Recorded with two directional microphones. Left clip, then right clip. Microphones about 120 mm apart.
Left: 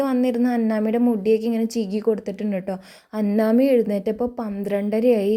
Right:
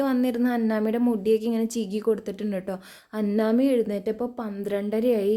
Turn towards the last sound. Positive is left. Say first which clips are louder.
# left 4 dB
turn(degrees=30)  # may be behind; listen again after turning